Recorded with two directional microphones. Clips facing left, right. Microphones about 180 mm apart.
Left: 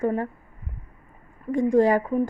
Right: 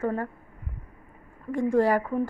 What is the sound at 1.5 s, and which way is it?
Speech, 20° left (ahead or behind).